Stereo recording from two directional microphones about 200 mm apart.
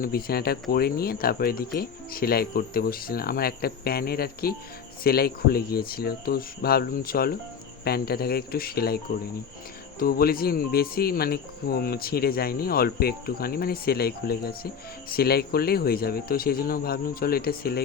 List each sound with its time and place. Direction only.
0.0 s speech: 50° left (ahead or behind)